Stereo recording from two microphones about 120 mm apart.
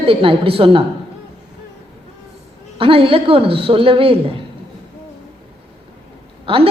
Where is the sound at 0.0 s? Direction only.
50° right (ahead or behind).